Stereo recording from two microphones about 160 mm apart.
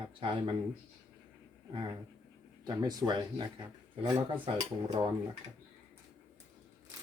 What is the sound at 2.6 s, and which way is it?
Speech, 25° right (ahead or behind).